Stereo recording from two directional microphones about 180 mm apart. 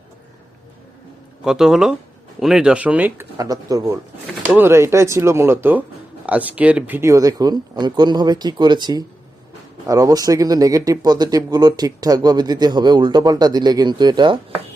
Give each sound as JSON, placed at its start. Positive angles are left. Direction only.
{"t": 1.5, "sound": "speech", "side_deg": -5}